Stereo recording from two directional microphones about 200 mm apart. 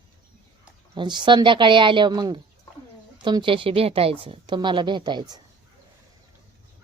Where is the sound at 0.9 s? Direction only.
25° right (ahead or behind).